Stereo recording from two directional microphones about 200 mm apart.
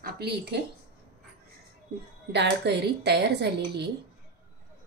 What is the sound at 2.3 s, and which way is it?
A woman's voice, 60° right (ahead or behind).